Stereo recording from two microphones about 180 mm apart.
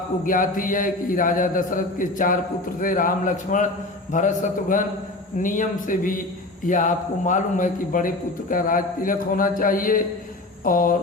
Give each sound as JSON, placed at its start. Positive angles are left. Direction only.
{"t": 0.3, "sound": "a man's voice", "side_deg": 50}